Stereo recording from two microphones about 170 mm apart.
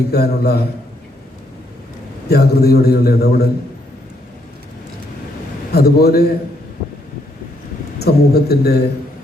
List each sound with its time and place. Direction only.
0.1 s a man's voice: 70° left (ahead or behind)
2.3 s a man's voice: 65° left (ahead or behind)
5.7 s a man's voice: 65° left (ahead or behind)
7.9 s a man's voice: 70° left (ahead or behind)